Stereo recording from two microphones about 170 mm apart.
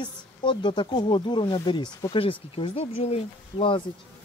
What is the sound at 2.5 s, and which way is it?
Speech, 35° left (ahead or behind).